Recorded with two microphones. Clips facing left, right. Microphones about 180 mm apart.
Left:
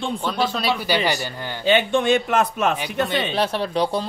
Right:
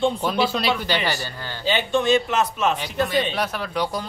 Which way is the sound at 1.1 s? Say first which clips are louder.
Left 3 dB; 15° left (ahead or behind).